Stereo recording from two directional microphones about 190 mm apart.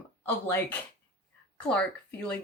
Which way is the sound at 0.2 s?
10° left (ahead or behind).